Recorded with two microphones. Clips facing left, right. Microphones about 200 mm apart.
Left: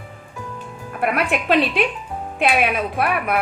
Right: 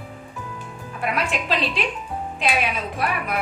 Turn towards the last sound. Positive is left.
turn(degrees=60)  # may be behind; listen again after turning